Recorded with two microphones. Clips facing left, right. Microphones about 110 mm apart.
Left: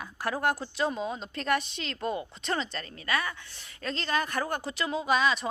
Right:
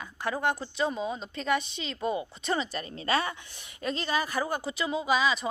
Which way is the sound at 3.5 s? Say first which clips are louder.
Right 2 dB; 15° right (ahead or behind).